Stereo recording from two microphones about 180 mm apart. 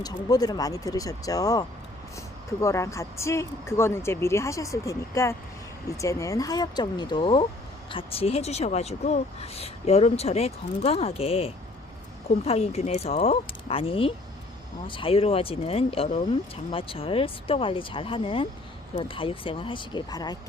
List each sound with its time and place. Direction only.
0.0 s speech: 20° left (ahead or behind)